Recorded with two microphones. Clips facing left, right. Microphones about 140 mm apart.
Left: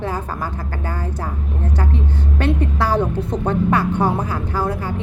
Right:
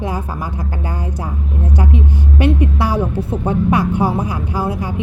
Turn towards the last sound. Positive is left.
turn(degrees=-10)  # may be behind; listen again after turning